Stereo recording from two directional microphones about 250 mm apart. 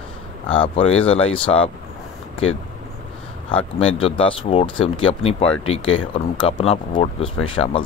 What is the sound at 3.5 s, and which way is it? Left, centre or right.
Speech, left.